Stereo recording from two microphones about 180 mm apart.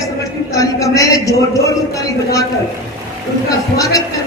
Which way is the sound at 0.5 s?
20° left (ahead or behind).